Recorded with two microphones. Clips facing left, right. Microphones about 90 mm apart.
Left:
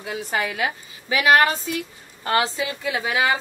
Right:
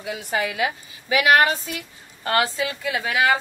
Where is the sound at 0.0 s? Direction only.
30° left (ahead or behind).